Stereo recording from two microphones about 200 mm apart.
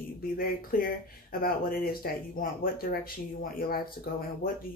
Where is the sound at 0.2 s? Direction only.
45° left (ahead or behind).